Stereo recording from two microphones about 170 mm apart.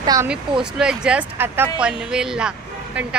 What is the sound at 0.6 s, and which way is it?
Speech, 5° right (ahead or behind).